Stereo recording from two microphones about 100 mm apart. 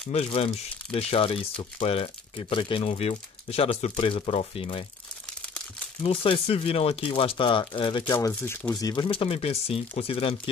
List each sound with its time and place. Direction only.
0.1 s speech: 90° left
0.9 s speech: 65° left (ahead or behind); by 3.7 s 90° left
3.9 s speech: 60° left (ahead or behind)
6.0 s speech: 70° left (ahead or behind)
8.3 s speech: 15° left (ahead or behind)
8.8 s speech: 50° left (ahead or behind); by 10.5 s 65° left (ahead or behind)